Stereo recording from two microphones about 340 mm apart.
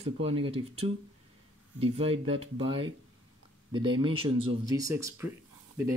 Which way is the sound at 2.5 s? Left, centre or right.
Centre.